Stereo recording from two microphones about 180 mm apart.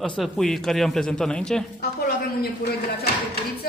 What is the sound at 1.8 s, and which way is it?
Speech, 60° left (ahead or behind).